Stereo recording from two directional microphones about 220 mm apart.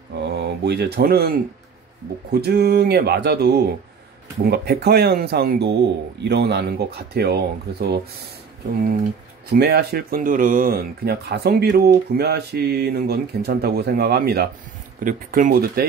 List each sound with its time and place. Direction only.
0.2 s speech: 50° right (ahead or behind)
2.3 s speech: 45° right (ahead or behind)
9.5 s speech: 45° right (ahead or behind)